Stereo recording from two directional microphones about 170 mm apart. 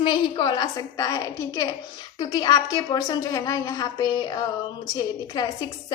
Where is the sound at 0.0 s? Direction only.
30° left (ahead or behind).